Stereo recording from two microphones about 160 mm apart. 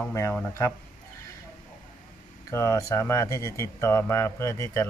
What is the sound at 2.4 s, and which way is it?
Speech, 20° left (ahead or behind).